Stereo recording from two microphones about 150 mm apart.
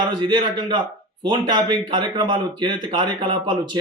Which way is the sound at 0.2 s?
30° right (ahead or behind).